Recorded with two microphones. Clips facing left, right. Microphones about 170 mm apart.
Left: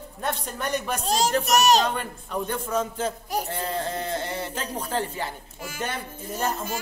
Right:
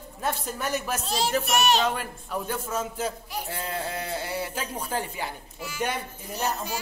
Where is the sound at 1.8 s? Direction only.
5° right (ahead or behind).